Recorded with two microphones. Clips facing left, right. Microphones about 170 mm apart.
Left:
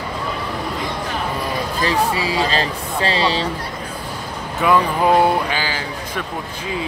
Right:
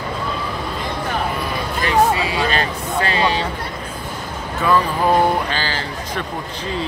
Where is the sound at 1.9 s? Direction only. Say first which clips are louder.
Right 4 dB; 35° left (ahead or behind).